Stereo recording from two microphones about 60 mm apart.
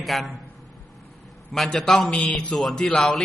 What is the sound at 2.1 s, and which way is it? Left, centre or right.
Speech, centre.